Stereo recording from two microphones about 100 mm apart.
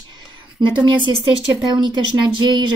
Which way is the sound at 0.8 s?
50° right (ahead or behind).